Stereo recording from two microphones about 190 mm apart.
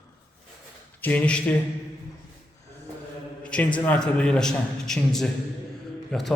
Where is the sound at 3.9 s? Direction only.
5° left (ahead or behind).